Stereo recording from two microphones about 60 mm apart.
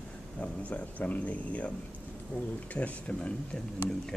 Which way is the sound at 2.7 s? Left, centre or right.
Left.